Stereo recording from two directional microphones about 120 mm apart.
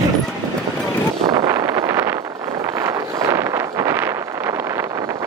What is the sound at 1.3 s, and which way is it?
Vehicle, 30° right (ahead or behind).